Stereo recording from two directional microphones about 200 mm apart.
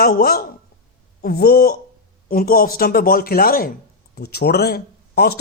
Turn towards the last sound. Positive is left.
turn(degrees=50)  # may be behind; listen again after turning